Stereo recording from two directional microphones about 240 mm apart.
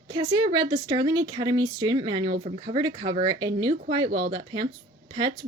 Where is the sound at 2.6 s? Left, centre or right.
Centre.